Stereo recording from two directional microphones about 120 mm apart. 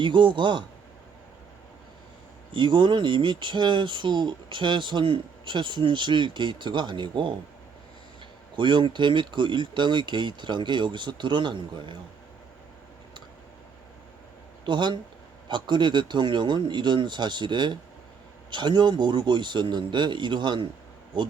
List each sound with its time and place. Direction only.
0.0 s speech: 40° right (ahead or behind)
2.5 s speech: 40° right (ahead or behind)
8.5 s speech: 40° right (ahead or behind)
14.6 s speech: 40° right (ahead or behind)